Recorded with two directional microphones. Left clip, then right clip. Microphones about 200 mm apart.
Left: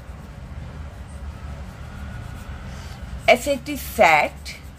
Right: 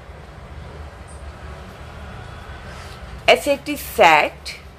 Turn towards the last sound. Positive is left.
turn(degrees=10)  # may be behind; listen again after turning